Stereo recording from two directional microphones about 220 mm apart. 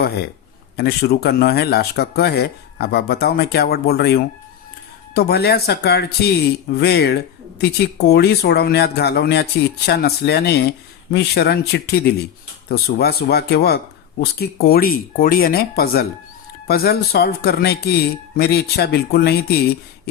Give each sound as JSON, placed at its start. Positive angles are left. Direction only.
{"t": 0.8, "sound": "speech", "side_deg": 45}